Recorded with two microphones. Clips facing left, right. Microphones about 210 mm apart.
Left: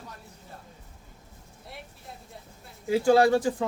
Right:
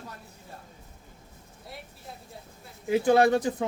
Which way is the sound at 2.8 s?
20° right (ahead or behind).